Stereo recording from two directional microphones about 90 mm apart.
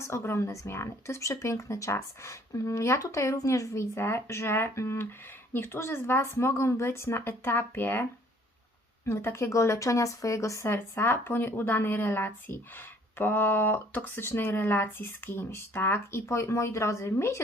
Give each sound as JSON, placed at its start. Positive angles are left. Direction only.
{"t": 0.0, "sound": "speech", "side_deg": 30}
{"t": 9.0, "sound": "speech", "side_deg": 30}